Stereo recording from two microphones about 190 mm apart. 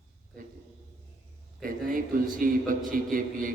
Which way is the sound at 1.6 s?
45° right (ahead or behind).